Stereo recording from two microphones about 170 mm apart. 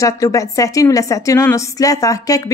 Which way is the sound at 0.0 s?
20° left (ahead or behind).